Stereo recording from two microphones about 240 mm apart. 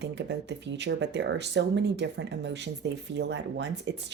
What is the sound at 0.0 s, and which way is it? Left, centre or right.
Speech, right.